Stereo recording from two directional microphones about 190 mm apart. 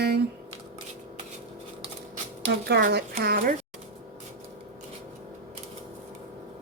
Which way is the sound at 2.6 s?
60° right (ahead or behind).